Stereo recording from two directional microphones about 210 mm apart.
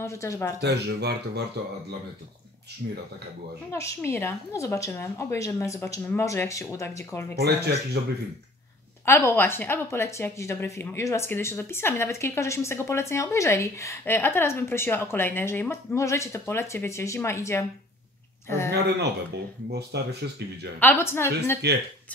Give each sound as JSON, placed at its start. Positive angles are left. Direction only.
{"t": 0.0, "sound": "speech", "side_deg": 15}
{"t": 0.6, "sound": "speech", "side_deg": -55}
{"t": 3.7, "sound": "speech", "side_deg": 15}
{"t": 7.3, "sound": "speech", "side_deg": -50}
{"t": 9.0, "sound": "speech", "side_deg": 10}
{"t": 18.9, "sound": "speech", "side_deg": -50}
{"t": 20.8, "sound": "speech", "side_deg": 10}
{"t": 21.6, "sound": "speech", "side_deg": -55}